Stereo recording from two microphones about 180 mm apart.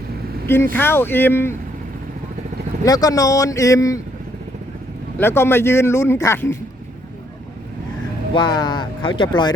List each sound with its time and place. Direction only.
0.4 s speech: 10° left (ahead or behind)
2.8 s speech: 20° left (ahead or behind)
5.1 s speech: 15° left (ahead or behind)
8.3 s speech: 25° left (ahead or behind)